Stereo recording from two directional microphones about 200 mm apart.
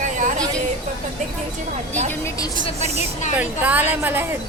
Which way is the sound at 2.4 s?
30° left (ahead or behind).